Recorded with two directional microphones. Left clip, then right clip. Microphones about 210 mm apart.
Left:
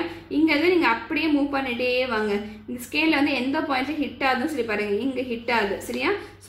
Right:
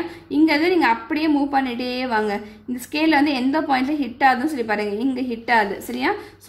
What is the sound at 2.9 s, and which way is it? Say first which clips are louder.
Speech: right 3 dB; 45° right (ahead or behind).